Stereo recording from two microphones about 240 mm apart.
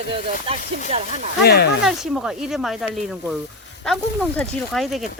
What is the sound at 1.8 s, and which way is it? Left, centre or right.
Speech, centre.